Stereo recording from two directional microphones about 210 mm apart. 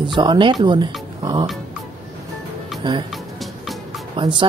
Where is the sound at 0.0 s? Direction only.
20° right (ahead or behind).